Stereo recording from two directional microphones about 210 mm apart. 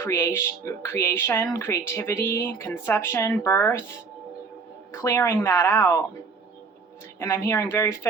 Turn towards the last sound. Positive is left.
turn(degrees=15)  # may be behind; listen again after turning